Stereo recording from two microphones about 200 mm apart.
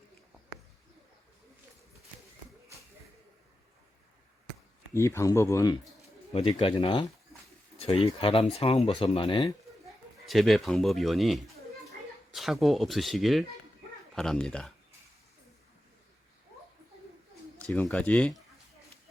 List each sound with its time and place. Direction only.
4.9 s speech: 15° left (ahead or behind)
6.0 s speech: 30° left (ahead or behind)
10.2 s speech: centre (ahead or behind)
17.6 s speech: 5° left (ahead or behind)